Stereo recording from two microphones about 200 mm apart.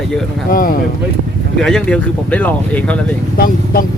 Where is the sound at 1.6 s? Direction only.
5° left (ahead or behind).